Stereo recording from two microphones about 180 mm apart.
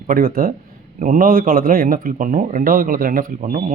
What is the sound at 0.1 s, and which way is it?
A man's voice, 50° right (ahead or behind).